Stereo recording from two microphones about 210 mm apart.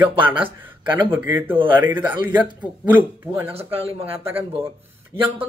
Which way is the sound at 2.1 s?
20° right (ahead or behind).